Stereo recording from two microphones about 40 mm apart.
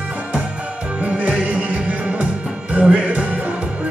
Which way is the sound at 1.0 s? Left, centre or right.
Right.